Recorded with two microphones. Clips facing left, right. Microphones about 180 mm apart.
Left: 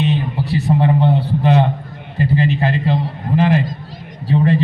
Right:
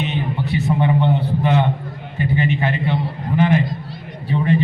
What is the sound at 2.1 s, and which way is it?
A man's voice, 35° left (ahead or behind).